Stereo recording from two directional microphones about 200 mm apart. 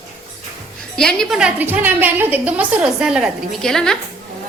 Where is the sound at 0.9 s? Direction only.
5° left (ahead or behind).